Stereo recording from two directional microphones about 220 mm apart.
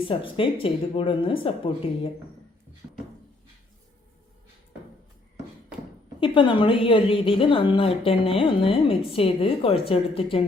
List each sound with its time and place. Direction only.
0.0 s a woman's voice: 25° left (ahead or behind)
6.1 s a woman's voice: 25° left (ahead or behind)